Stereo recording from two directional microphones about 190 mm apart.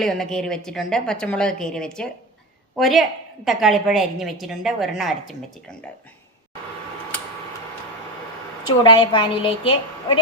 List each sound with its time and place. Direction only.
0.0 s a woman's voice: centre (ahead or behind)
8.6 s a woman's voice: 25° left (ahead or behind)